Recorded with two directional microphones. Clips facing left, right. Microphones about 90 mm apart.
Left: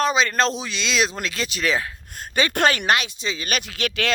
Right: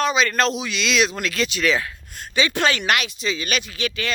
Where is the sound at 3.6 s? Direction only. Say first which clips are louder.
Left 1 dB; 60° left (ahead or behind).